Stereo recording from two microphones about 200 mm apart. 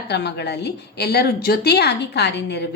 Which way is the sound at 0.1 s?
55° left (ahead or behind).